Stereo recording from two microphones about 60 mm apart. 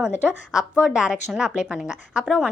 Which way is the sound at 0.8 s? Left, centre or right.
Centre.